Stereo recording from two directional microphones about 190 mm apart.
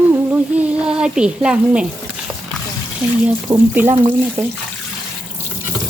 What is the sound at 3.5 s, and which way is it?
Speech, 20° right (ahead or behind).